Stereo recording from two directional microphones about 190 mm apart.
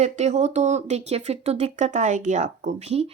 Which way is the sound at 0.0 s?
35° right (ahead or behind).